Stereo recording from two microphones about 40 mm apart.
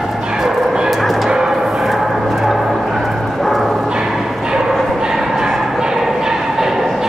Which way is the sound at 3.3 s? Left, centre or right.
Centre.